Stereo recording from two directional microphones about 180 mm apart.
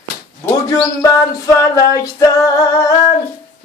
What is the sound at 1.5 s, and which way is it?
A capella, 20° left (ahead or behind).